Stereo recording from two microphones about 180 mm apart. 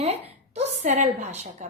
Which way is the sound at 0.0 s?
35° right (ahead or behind).